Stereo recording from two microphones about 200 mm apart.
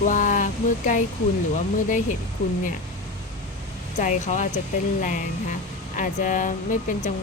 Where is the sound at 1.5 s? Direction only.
40° left (ahead or behind).